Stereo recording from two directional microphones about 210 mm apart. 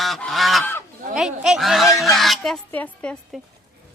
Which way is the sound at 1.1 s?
Centre (ahead or behind).